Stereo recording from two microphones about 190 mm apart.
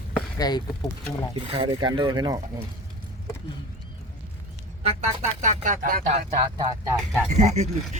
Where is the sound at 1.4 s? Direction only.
30° right (ahead or behind).